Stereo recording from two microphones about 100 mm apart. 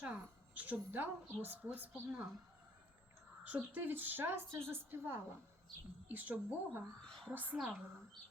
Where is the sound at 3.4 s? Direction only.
15° right (ahead or behind).